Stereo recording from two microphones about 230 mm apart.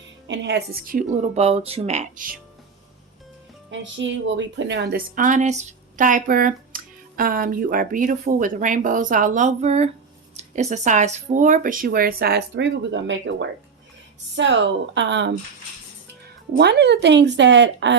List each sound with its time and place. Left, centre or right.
0.3 s a woman's voice: right
3.7 s a woman's voice: right
16.6 s a woman's voice: right